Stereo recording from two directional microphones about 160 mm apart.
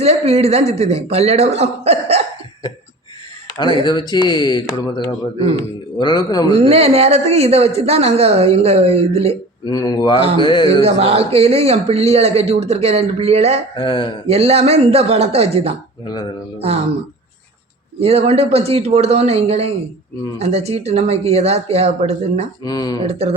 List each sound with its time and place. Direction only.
0.0 s speech: 40° right (ahead or behind)
3.8 s speech: 25° left (ahead or behind)
5.4 s speech: 40° right (ahead or behind)
6.0 s speech: 30° left (ahead or behind)
6.5 s speech: 40° right (ahead or behind)
9.6 s speech: 25° left (ahead or behind)
10.8 s speech: 40° right (ahead or behind)
13.7 s speech: 30° left (ahead or behind)
14.3 s speech: 40° right (ahead or behind)
18.0 s speech: 40° right (ahead or behind)
22.6 s speech: 25° left (ahead or behind)
23.0 s speech: 40° right (ahead or behind)